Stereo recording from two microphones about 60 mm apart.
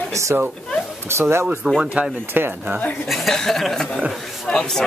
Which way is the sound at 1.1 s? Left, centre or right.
Right.